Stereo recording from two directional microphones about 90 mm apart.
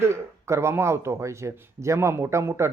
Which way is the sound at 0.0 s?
30° right (ahead or behind).